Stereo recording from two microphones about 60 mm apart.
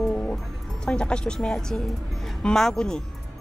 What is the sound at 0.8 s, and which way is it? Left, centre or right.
Speech, centre.